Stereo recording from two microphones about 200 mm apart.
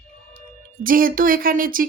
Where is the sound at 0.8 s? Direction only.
45° right (ahead or behind).